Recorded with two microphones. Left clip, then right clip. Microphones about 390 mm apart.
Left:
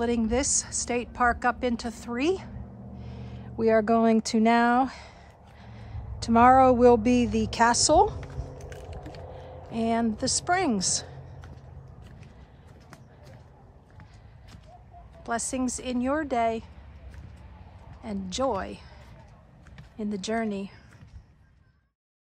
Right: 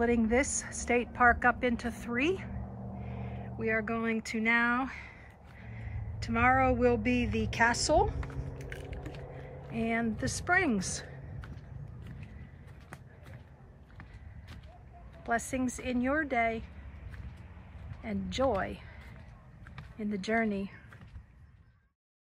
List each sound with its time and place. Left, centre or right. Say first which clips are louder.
0.0 s a woman's voice: left 2 dB; centre
3.5 s speech: left 10 dB; centre
9.7 s a woman's voice: left 6 dB; centre
15.2 s a woman's voice: left 2 dB; centre
18.0 s a woman's voice: left 2 dB; centre
20.0 s a woman's voice: left 1 dB; centre